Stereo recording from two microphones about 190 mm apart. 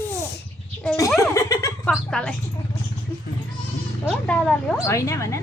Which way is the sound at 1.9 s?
5° left (ahead or behind).